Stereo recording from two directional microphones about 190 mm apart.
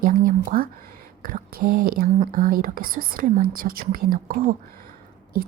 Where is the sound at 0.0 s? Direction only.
50° right (ahead or behind).